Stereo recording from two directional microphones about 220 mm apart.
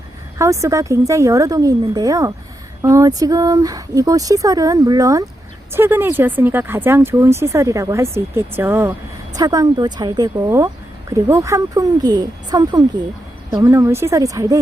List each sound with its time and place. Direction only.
0.3 s speech: 15° right (ahead or behind)